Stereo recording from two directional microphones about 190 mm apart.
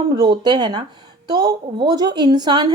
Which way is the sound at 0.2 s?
20° right (ahead or behind).